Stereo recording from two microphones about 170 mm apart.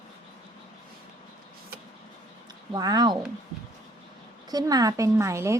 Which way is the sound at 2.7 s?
25° right (ahead or behind).